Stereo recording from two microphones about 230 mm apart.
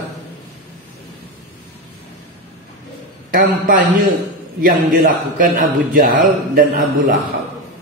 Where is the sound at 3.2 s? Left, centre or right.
Right.